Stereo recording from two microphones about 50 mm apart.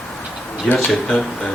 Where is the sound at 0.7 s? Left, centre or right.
Left.